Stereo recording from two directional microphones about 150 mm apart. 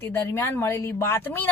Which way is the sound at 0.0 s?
15° left (ahead or behind).